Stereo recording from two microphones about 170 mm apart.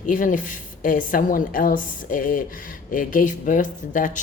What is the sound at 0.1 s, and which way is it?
Speech, 50° left (ahead or behind).